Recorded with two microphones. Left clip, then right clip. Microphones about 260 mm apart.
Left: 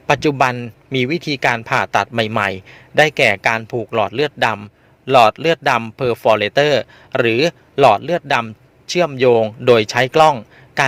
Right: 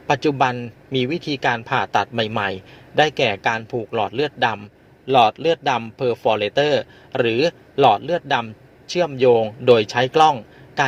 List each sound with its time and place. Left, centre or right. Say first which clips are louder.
0.1 s a man's voice: left 3 dB; left